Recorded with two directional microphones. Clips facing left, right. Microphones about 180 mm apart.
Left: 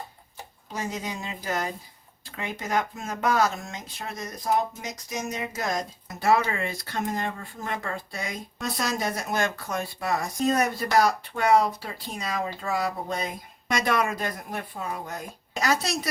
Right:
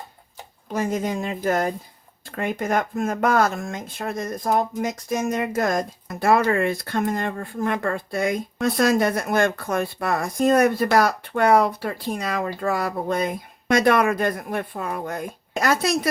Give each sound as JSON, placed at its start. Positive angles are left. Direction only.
{"t": 0.7, "sound": "speech", "side_deg": -55}